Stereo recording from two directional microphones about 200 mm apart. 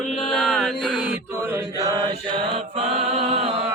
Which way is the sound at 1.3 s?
15° right (ahead or behind).